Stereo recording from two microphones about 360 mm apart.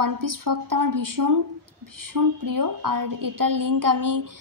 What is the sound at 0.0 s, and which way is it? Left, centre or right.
A woman's voice, right.